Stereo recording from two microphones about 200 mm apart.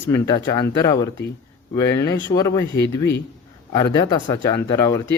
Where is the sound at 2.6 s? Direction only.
60° left (ahead or behind).